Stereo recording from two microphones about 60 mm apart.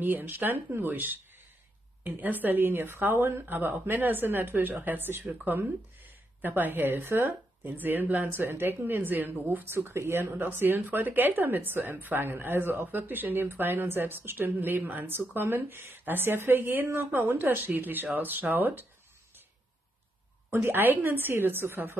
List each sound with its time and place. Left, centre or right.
0.0 s speech: right
9.7 s speech: right
20.5 s speech: right